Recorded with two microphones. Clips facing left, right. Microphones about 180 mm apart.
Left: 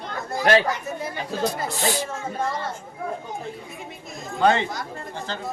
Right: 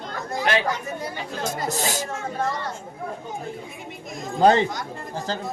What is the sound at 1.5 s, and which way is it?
Speech, 40° right (ahead or behind).